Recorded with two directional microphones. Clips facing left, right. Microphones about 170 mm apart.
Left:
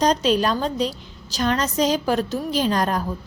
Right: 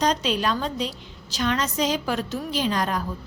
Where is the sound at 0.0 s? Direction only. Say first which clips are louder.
Left 4 dB; 40° left (ahead or behind).